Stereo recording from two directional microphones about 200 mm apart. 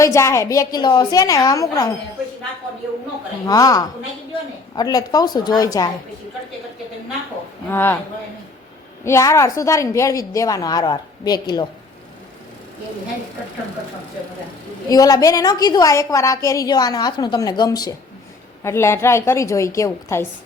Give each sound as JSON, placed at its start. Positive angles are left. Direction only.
{"t": 0.0, "sound": "a woman's voice", "side_deg": 15}
{"t": 3.4, "sound": "a woman's voice", "side_deg": 20}
{"t": 7.7, "sound": "a woman's voice", "side_deg": 10}
{"t": 9.0, "sound": "a woman's voice", "side_deg": 15}
{"t": 14.8, "sound": "a woman's voice", "side_deg": 20}